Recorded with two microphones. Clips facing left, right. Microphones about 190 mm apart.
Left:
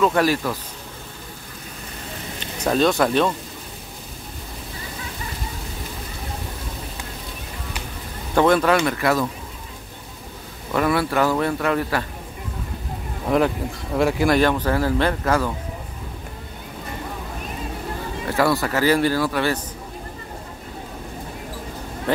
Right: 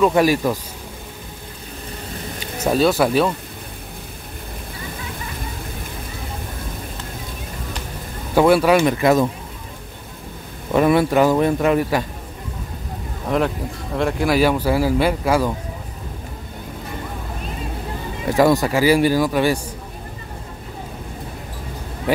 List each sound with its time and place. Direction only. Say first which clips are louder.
0.0 s speech: right 3 dB; 15° right (ahead or behind)
2.4 s speech: right 2 dB; 5° right (ahead or behind)
8.4 s speech: right 3 dB; 10° right (ahead or behind)
10.7 s speech: right 5 dB; 20° right (ahead or behind)
13.3 s speech: left 1 dB; 5° left (ahead or behind)
18.3 s speech: right 5 dB; 15° right (ahead or behind)